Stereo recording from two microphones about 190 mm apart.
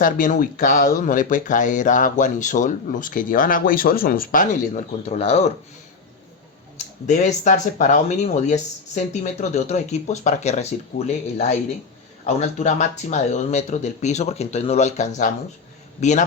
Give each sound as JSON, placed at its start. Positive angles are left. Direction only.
{"t": 0.0, "sound": "speech", "side_deg": 45}
{"t": 5.0, "sound": "speech", "side_deg": 35}
{"t": 7.1, "sound": "speech", "side_deg": 40}